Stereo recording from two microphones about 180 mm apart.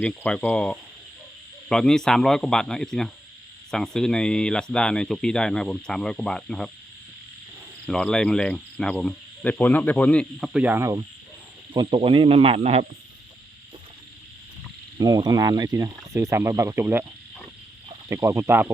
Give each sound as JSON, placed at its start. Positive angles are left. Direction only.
{"t": 0.0, "sound": "speech", "side_deg": 5}
{"t": 7.9, "sound": "speech", "side_deg": 5}
{"t": 10.5, "sound": "speech", "side_deg": -10}
{"t": 11.7, "sound": "speech", "side_deg": -30}
{"t": 14.9, "sound": "speech", "side_deg": -20}
{"t": 18.1, "sound": "speech", "side_deg": -15}